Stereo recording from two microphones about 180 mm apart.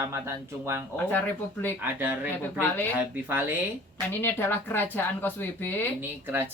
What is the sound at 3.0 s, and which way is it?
Speech, 10° right (ahead or behind).